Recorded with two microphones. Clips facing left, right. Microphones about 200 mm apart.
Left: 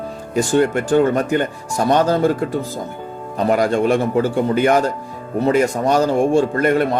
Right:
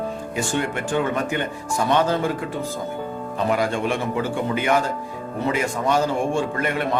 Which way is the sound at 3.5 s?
40° left (ahead or behind).